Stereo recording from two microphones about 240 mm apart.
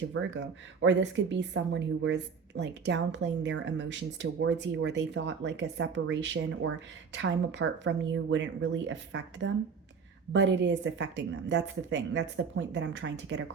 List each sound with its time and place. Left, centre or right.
0.1 s a woman's voice: right